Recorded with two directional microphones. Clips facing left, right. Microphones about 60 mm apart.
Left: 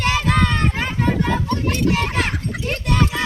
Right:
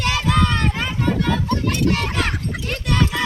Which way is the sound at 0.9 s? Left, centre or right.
Left.